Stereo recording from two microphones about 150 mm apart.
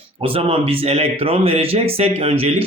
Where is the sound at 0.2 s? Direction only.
40° right (ahead or behind).